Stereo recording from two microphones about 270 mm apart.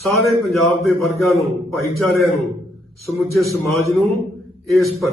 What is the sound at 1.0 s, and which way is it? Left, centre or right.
A man's voice, centre.